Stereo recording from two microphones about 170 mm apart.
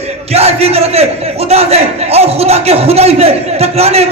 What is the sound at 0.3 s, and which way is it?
A man's voice, 35° right (ahead or behind).